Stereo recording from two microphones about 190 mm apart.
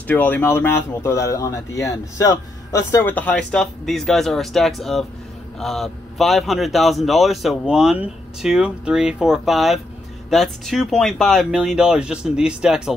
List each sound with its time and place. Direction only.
0.0 s a man's voice: 10° left (ahead or behind)